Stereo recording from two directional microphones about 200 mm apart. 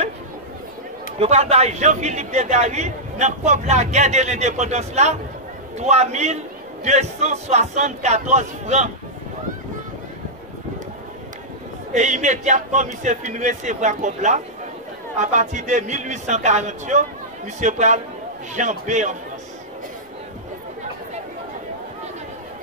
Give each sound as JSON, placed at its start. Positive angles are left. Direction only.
{"t": 1.2, "sound": "a man's voice", "side_deg": -30}
{"t": 11.9, "sound": "a man's voice", "side_deg": -35}